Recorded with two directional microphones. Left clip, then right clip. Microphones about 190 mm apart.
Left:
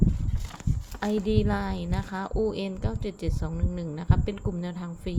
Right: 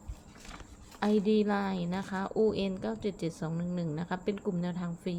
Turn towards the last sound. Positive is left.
turn(degrees=5)  # may be behind; listen again after turning